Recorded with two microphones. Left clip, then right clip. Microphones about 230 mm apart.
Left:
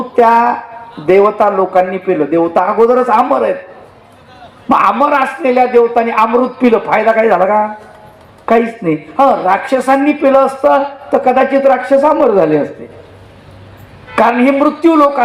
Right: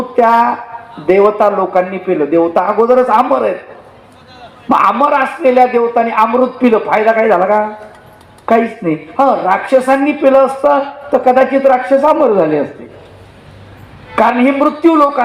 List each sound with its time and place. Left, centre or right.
0.2 s speech: left
4.7 s speech: left
14.2 s speech: left